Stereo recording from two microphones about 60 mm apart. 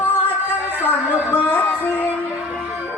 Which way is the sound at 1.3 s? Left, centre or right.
Left.